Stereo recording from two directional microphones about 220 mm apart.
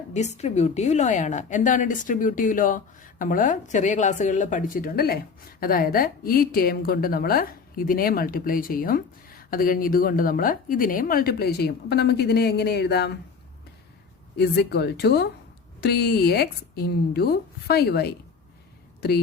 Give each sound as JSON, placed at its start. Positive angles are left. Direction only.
{"t": 0.1, "sound": "a woman's voice", "side_deg": 30}
{"t": 14.3, "sound": "speech", "side_deg": 50}